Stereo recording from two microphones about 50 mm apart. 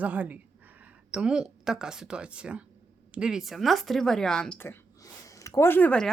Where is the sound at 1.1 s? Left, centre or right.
Centre.